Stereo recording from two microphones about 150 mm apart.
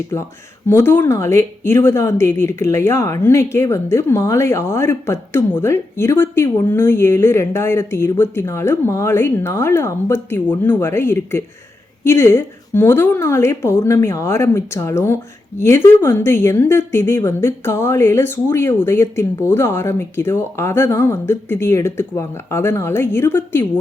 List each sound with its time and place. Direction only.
0.7 s a woman's voice: 15° left (ahead or behind)